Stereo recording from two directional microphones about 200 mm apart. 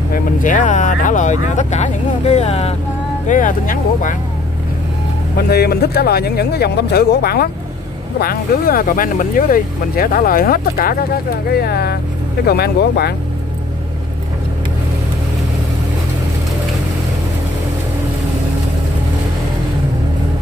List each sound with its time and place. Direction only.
0.1 s speech: 40° left (ahead or behind)
3.3 s speech: 40° left (ahead or behind)
5.5 s speech: 50° left (ahead or behind)